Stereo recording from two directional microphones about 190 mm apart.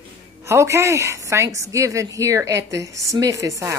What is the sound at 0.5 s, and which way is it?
A woman's voice, 15° right (ahead or behind).